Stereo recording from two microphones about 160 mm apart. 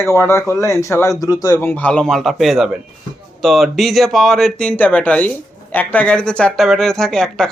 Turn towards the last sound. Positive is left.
turn(degrees=5)  # may be behind; listen again after turning